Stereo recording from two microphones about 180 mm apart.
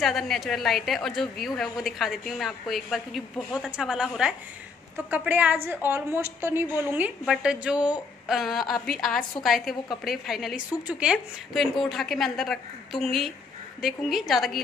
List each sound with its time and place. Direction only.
0.0 s a woman's voice: centre (ahead or behind)